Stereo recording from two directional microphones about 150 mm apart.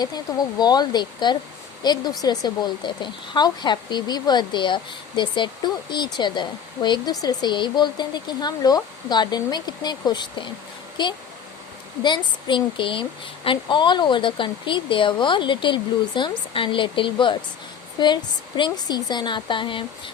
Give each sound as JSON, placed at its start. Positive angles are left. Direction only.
{"t": 0.0, "sound": "speech", "side_deg": 25}